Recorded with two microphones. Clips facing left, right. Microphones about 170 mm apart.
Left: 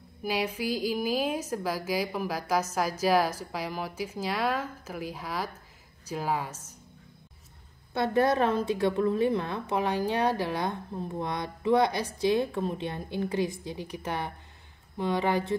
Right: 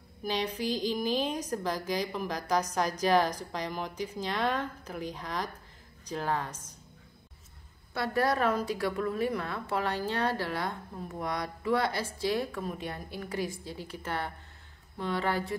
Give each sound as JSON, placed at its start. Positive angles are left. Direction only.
{"t": 0.2, "sound": "a woman's voice", "side_deg": 10}
{"t": 7.9, "sound": "a woman's voice", "side_deg": 25}